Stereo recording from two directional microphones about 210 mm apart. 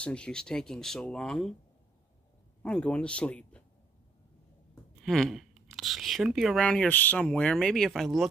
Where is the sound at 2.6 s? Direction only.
5° left (ahead or behind).